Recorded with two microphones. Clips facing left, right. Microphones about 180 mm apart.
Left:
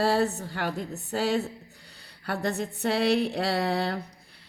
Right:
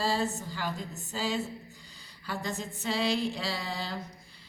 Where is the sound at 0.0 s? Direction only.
65° left (ahead or behind).